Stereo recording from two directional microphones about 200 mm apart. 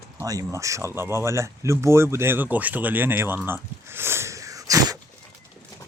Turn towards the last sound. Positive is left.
turn(degrees=-15)  # may be behind; listen again after turning